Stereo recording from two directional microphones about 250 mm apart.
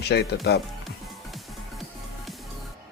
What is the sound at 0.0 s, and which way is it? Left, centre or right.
Speech, left.